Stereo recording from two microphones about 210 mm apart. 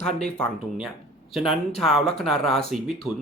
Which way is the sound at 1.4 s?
Centre (ahead or behind).